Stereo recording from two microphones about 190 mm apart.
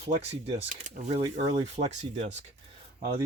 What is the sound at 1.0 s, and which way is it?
Speech, 35° right (ahead or behind).